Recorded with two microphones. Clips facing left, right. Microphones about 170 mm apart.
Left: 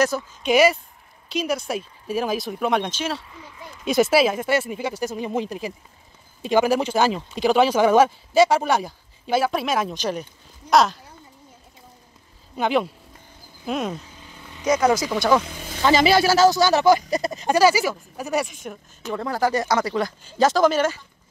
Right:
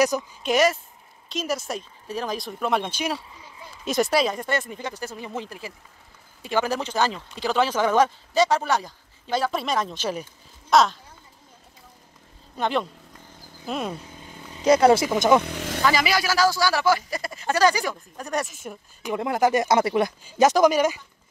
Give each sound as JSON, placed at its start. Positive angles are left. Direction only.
{"t": 0.4, "sound": "speech", "side_deg": 0}
{"t": 3.8, "sound": "speech", "side_deg": 0}
{"t": 9.9, "sound": "speech", "side_deg": -5}
{"t": 12.5, "sound": "speech", "side_deg": 5}
{"t": 14.6, "sound": "speech", "side_deg": -30}
{"t": 15.4, "sound": "speech", "side_deg": -70}
{"t": 15.8, "sound": "speech", "side_deg": 25}
{"t": 19.1, "sound": "speech", "side_deg": -20}